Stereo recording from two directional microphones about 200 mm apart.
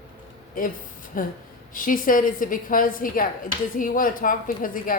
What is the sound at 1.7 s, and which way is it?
Speech, 45° left (ahead or behind).